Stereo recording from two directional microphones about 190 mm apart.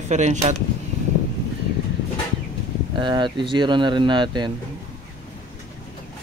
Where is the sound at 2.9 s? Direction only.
25° right (ahead or behind).